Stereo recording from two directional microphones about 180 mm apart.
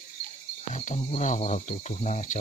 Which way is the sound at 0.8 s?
40° left (ahead or behind).